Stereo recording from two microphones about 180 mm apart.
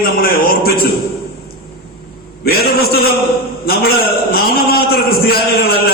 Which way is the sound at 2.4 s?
60° left (ahead or behind).